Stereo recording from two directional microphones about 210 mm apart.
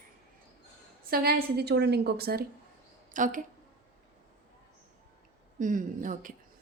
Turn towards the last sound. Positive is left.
turn(degrees=-40)  # may be behind; listen again after turning